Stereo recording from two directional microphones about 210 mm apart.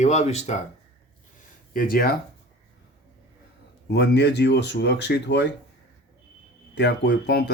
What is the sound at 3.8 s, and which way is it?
Speech, 50° left (ahead or behind).